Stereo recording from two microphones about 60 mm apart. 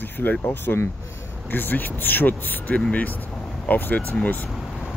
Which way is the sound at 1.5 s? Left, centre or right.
Left.